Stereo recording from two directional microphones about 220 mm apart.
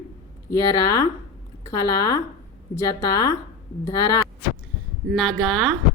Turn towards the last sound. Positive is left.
turn(degrees=0)  # may be behind; listen again after turning